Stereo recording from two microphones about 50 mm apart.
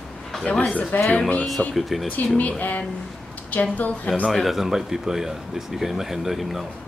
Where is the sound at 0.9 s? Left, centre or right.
Left.